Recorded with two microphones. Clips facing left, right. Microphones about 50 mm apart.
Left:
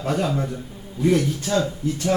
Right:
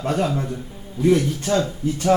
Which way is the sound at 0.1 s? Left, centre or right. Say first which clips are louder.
Even; centre.